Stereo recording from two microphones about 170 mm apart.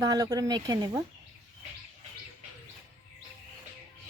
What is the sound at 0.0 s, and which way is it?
Speech, 20° right (ahead or behind).